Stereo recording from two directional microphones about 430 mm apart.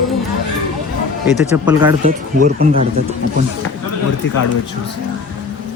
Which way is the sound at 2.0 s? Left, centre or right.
Centre.